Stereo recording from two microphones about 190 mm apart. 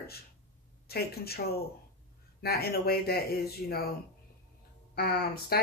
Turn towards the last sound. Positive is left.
turn(degrees=55)  # may be behind; listen again after turning